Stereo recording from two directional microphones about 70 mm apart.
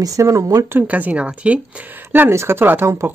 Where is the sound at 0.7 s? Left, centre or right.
Right.